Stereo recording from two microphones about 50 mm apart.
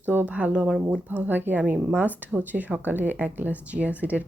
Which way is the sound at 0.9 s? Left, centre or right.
Right.